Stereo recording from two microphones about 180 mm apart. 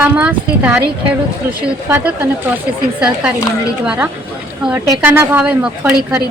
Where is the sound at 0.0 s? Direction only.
10° right (ahead or behind).